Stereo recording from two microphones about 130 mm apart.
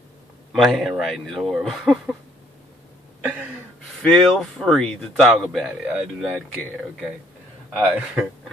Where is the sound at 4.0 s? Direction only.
5° left (ahead or behind).